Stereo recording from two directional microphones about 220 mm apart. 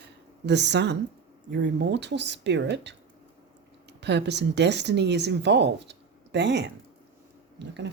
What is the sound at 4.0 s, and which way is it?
A woman's voice, 50° right (ahead or behind).